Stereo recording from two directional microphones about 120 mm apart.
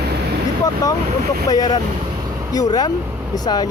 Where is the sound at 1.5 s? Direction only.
30° left (ahead or behind).